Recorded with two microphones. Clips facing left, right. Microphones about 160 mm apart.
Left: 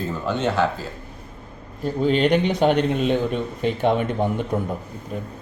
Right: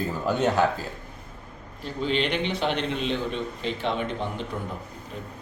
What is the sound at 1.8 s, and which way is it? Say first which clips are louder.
A man's voice: left 7 dB; 45° left (ahead or behind).